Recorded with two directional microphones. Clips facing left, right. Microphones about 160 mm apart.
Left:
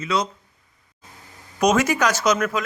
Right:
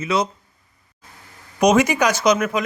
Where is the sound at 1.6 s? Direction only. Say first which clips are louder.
Right 3 dB; 15° right (ahead or behind).